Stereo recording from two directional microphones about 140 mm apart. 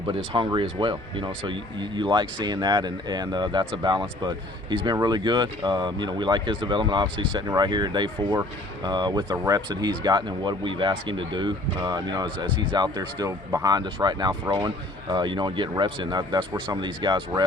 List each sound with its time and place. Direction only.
0.3 s speech: 35° right (ahead or behind)